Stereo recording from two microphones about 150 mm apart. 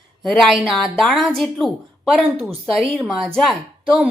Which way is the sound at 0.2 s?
Centre (ahead or behind).